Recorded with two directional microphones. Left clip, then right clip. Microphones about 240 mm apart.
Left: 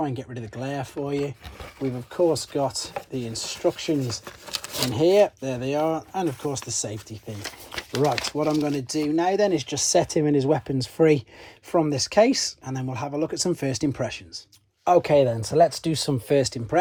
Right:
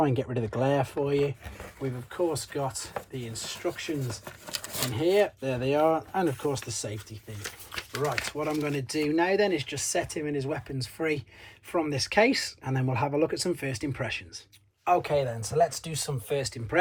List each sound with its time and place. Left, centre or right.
0.0 s speech: centre
3.7 s speech: centre
6.5 s speech: left
8.4 s speech: centre
9.9 s speech: left
11.7 s speech: centre
14.8 s speech: left
15.2 s speech: left